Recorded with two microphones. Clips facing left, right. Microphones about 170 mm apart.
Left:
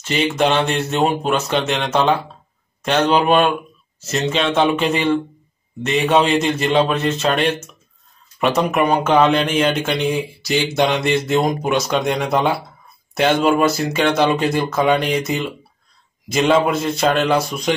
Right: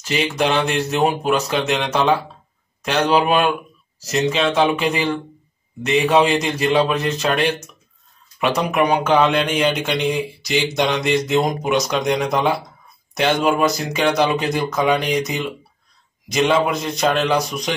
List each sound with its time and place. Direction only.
0.0 s speech: centre (ahead or behind)